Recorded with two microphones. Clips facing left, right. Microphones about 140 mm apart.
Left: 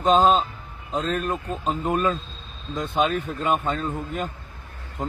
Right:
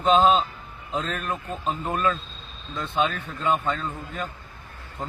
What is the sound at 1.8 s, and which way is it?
Speech, 15° left (ahead or behind).